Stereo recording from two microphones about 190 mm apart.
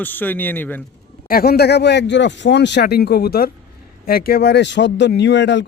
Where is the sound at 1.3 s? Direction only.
50° left (ahead or behind).